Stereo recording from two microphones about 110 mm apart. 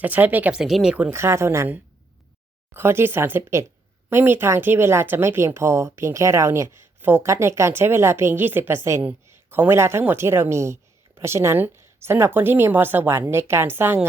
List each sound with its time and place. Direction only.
0.0 s speech: 15° right (ahead or behind)
0.6 s speech: 5° right (ahead or behind)
1.1 s speech: 25° right (ahead or behind)